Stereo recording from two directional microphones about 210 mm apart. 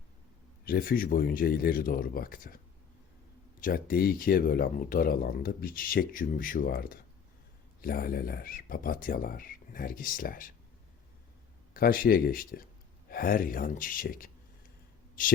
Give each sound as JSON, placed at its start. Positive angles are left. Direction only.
{"t": 0.6, "sound": "speech", "side_deg": 45}
{"t": 3.6, "sound": "speech", "side_deg": 45}
{"t": 11.7, "sound": "a man's voice", "side_deg": 45}